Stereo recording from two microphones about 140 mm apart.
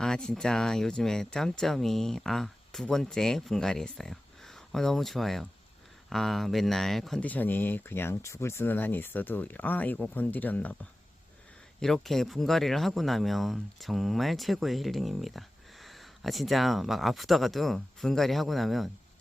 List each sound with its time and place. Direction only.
0.0 s speech: 5° left (ahead or behind)
11.8 s speech: centre (ahead or behind)